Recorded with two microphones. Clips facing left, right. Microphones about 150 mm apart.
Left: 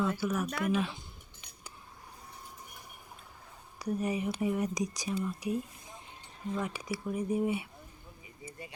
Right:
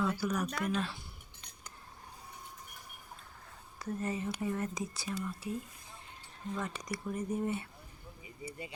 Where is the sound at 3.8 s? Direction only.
15° left (ahead or behind).